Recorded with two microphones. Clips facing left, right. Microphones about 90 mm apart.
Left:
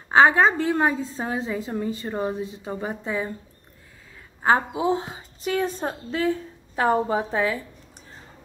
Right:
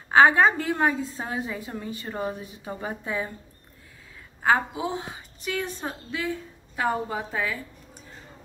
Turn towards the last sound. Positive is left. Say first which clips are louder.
# left 6 dB
turn(degrees=25)  # may be behind; listen again after turning